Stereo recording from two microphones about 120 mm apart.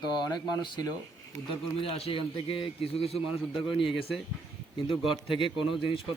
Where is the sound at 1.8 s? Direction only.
55° left (ahead or behind).